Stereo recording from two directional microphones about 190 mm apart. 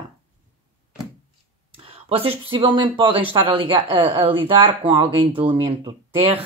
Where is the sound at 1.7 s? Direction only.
30° right (ahead or behind).